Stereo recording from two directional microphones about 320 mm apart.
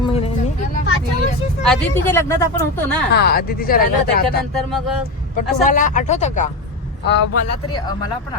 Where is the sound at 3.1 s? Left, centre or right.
Left.